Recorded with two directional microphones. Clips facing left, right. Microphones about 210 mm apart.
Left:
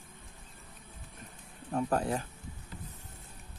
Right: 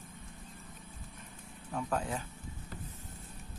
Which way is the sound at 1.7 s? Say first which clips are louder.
Left 5 dB; 40° left (ahead or behind).